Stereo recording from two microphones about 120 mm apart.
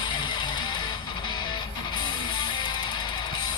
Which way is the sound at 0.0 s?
40° left (ahead or behind).